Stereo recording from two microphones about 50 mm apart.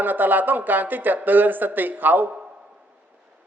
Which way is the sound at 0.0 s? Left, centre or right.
Right.